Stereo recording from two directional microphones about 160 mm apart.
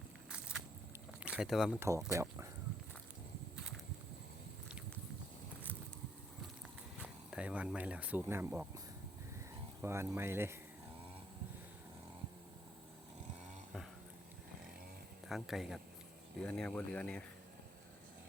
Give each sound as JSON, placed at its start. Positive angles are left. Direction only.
{"t": 0.3, "sound": "vehicle", "side_deg": -5}
{"t": 1.2, "sound": "speech", "side_deg": -5}
{"t": 2.1, "sound": "speech", "side_deg": -20}
{"t": 7.0, "sound": "speech", "side_deg": -5}
{"t": 9.8, "sound": "speech", "side_deg": -15}
{"t": 15.3, "sound": "speech", "side_deg": 0}